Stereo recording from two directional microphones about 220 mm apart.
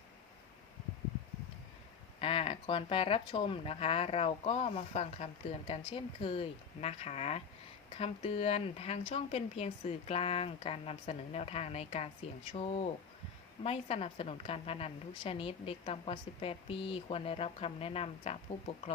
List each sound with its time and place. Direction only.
2.1 s speech: 25° left (ahead or behind)